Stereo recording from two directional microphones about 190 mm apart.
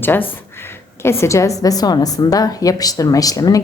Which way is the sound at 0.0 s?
10° left (ahead or behind).